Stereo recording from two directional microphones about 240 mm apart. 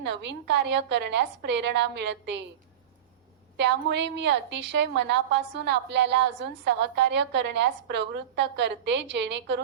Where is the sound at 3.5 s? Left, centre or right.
Right.